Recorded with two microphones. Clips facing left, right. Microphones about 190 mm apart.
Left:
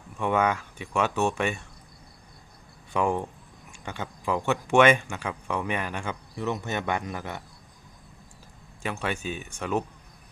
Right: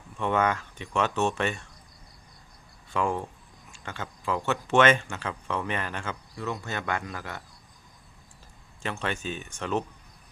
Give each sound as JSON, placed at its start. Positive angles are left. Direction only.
{"t": 0.2, "sound": "speech", "side_deg": 10}
{"t": 2.9, "sound": "speech", "side_deg": 15}
{"t": 8.8, "sound": "speech", "side_deg": 10}